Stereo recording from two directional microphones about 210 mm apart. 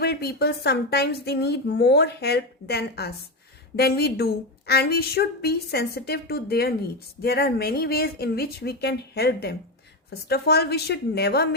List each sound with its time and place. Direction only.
0.0 s a woman's voice: 50° left (ahead or behind)